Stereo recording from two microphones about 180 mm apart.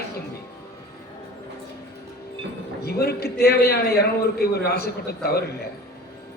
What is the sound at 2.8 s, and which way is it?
A man's voice, 60° left (ahead or behind).